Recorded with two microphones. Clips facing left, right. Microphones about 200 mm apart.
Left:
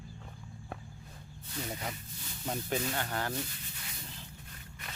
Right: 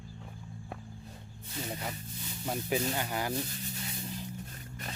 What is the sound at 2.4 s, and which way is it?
Speech, 5° right (ahead or behind).